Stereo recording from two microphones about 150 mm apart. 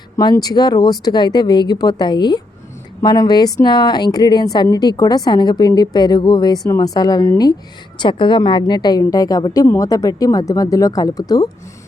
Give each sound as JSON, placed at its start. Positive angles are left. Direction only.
{"t": 0.2, "sound": "speech", "side_deg": 25}